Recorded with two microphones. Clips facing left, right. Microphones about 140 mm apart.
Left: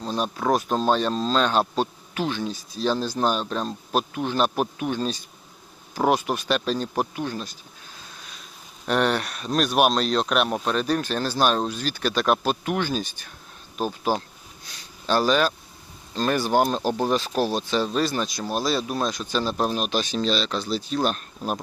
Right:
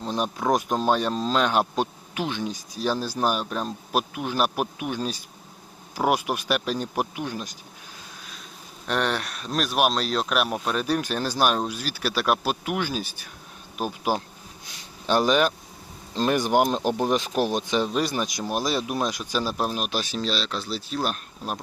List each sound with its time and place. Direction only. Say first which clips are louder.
0.0 s speech: left 1 dB; 15° right (ahead or behind)
8.9 s speech: left 3 dB; centre (ahead or behind)